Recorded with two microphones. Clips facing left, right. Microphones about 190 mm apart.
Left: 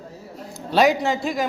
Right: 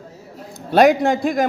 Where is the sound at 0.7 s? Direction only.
55° right (ahead or behind).